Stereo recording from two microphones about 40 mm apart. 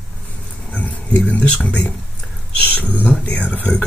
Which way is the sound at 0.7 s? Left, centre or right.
Left.